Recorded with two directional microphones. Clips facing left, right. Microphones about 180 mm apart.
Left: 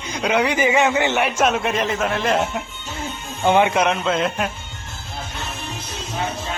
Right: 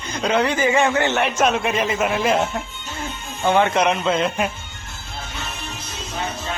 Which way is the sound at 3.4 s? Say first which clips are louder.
Left 1 dB; 15° left (ahead or behind).